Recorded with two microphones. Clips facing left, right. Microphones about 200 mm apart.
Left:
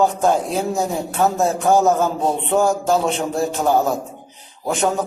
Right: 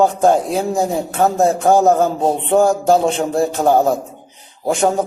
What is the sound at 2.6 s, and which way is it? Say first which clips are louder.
A man's voice: right 4 dB; 50° right (ahead or behind).